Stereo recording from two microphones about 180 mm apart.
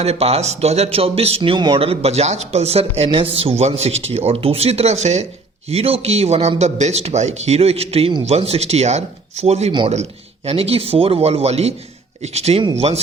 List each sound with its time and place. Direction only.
0.0 s speech: 35° right (ahead or behind)